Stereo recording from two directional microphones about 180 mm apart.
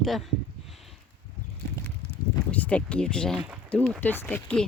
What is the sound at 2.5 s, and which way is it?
Speech, 10° left (ahead or behind).